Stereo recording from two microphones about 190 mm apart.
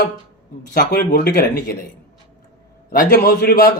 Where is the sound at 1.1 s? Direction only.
55° left (ahead or behind).